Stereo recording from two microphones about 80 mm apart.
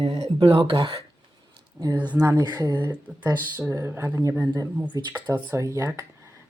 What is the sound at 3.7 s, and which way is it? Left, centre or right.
Speech, right.